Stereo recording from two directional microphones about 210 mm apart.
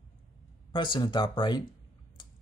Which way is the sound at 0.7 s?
20° left (ahead or behind).